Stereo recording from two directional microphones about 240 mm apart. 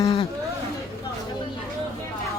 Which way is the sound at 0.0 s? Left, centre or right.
Left.